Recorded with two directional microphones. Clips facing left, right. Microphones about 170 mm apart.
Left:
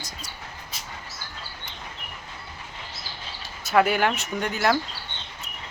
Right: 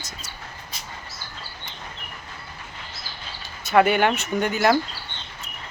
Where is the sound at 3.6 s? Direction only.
Centre (ahead or behind).